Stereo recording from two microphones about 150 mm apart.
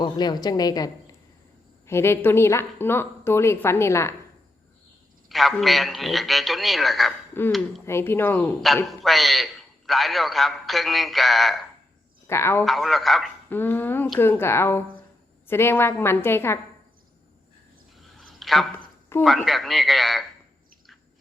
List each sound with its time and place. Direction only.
0.0 s a woman's voice: 30° left (ahead or behind)
1.9 s a woman's voice: 15° left (ahead or behind)
5.3 s a man's voice: centre (ahead or behind)
7.3 s a woman's voice: 15° left (ahead or behind)
8.6 s a man's voice: centre (ahead or behind)
12.3 s a woman's voice: 15° left (ahead or behind)
12.6 s a man's voice: centre (ahead or behind)
13.5 s a woman's voice: 15° left (ahead or behind)
18.0 s a sound: centre (ahead or behind)
19.2 s a man's voice: centre (ahead or behind)